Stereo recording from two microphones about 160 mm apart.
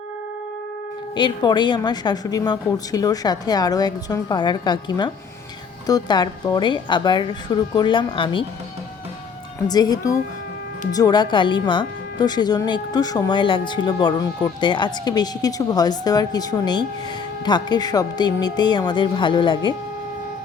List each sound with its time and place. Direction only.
1.1 s speech: 30° left (ahead or behind)
9.6 s speech: 25° left (ahead or behind)